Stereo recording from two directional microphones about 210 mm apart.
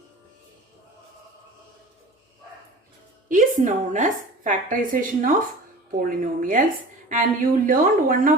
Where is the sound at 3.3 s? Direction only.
40° right (ahead or behind).